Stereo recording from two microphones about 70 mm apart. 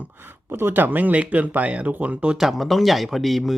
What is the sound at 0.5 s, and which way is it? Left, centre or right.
Speech, right.